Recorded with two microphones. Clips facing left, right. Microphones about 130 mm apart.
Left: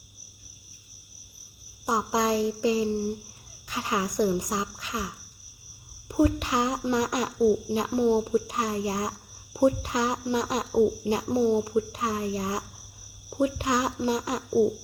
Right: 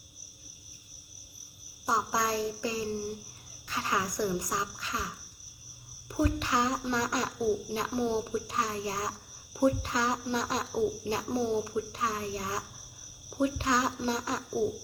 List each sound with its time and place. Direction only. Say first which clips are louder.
1.9 s a woman's voice: left 4 dB; 20° left (ahead or behind)